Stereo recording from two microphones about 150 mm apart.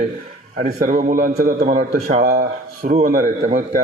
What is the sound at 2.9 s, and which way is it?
Speech, 55° right (ahead or behind).